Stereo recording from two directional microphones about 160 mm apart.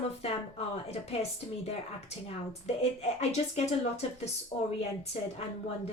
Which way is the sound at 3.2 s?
45° left (ahead or behind).